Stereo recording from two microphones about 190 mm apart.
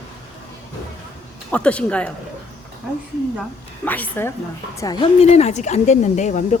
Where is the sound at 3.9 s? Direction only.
10° left (ahead or behind).